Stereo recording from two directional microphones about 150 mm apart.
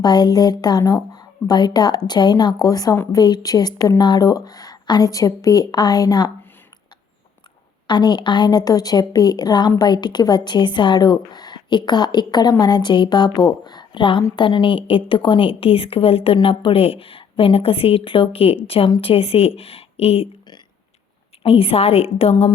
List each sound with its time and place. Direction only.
0.0 s a woman's voice: 30° left (ahead or behind)
7.9 s a woman's voice: 30° left (ahead or behind)
21.4 s a woman's voice: 40° left (ahead or behind)